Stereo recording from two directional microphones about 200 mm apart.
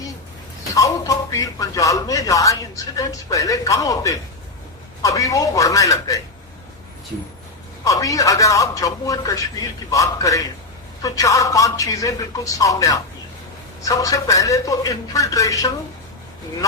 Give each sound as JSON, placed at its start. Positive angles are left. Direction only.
{"t": 0.7, "sound": "speech", "side_deg": 15}
{"t": 7.9, "sound": "speech", "side_deg": 15}